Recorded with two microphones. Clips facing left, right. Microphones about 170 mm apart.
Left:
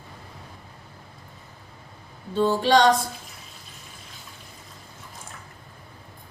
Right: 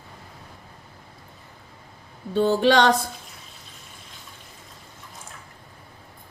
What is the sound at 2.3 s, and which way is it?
Speech, 60° right (ahead or behind).